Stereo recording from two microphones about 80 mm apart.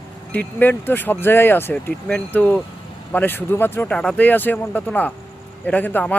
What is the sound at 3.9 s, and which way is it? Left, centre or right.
A man's voice, centre.